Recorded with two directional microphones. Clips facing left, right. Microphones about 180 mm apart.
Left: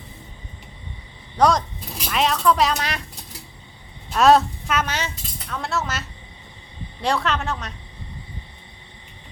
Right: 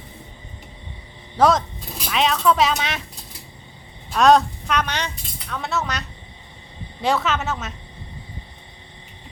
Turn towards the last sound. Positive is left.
turn(degrees=-5)  # may be behind; listen again after turning